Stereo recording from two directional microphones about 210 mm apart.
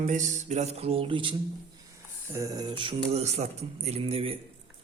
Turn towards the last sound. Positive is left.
turn(degrees=-25)  # may be behind; listen again after turning